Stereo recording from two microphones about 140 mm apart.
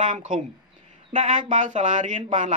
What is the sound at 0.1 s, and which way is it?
Speech, 65° right (ahead or behind).